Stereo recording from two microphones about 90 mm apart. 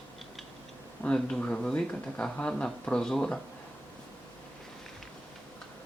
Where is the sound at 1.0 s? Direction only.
10° left (ahead or behind).